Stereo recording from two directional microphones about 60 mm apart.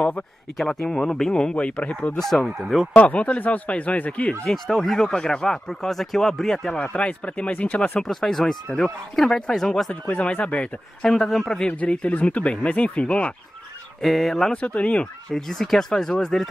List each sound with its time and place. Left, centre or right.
0.6 s speech: centre
2.1 s speech: centre
3.0 s speech: left
4.5 s speech: centre
6.7 s speech: left
8.0 s speech: centre
10.2 s speech: centre
11.1 s speech: centre
11.7 s speech: left
14.0 s speech: centre
14.5 s speech: left
15.3 s speech: centre